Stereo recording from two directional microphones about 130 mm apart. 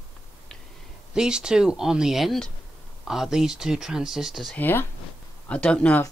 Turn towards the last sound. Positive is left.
turn(degrees=10)  # may be behind; listen again after turning